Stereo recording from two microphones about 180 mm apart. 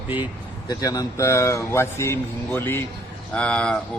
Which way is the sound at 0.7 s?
20° left (ahead or behind).